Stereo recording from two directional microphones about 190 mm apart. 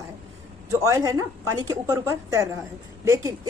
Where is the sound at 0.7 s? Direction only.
15° right (ahead or behind).